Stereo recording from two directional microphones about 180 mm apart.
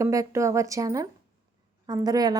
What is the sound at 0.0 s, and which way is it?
A woman's voice, 15° right (ahead or behind).